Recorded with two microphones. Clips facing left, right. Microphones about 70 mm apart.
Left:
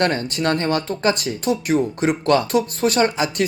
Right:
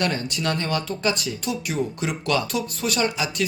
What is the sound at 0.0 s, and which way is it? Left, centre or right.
Speech, left.